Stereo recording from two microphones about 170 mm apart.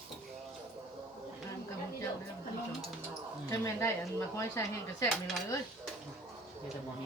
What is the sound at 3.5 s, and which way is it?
Speech, 15° left (ahead or behind).